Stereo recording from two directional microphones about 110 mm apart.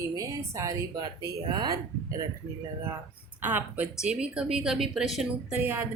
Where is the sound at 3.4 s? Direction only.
15° right (ahead or behind).